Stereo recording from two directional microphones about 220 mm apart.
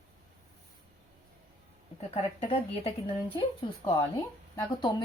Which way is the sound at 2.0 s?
30° left (ahead or behind).